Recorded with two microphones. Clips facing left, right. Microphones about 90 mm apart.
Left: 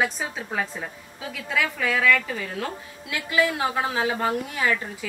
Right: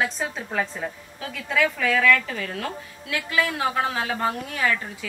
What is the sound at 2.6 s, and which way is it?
Speech, 20° left (ahead or behind).